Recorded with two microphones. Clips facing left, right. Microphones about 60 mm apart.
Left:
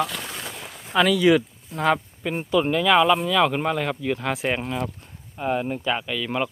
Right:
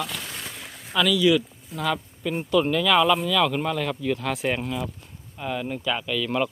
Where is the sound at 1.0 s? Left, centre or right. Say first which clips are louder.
Left 1 dB; left.